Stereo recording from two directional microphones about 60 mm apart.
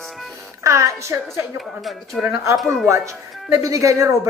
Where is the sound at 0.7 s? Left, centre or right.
Right.